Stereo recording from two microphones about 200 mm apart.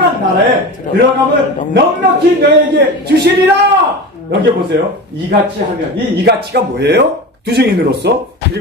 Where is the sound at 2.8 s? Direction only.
55° right (ahead or behind).